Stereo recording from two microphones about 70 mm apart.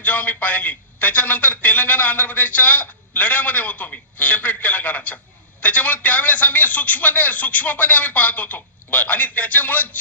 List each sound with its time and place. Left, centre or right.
0.0 s a man's voice: left